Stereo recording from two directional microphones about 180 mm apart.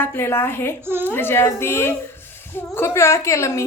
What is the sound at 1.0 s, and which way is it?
A woman's voice, 10° left (ahead or behind).